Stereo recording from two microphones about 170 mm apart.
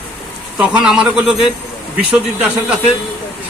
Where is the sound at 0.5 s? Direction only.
5° right (ahead or behind).